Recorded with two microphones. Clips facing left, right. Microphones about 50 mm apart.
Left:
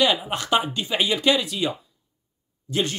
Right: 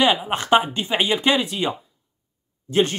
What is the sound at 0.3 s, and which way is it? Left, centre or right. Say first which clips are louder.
Speech: right 5 dB; right.